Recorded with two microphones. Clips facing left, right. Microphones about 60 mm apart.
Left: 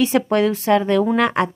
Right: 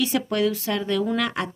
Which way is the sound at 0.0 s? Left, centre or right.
Left.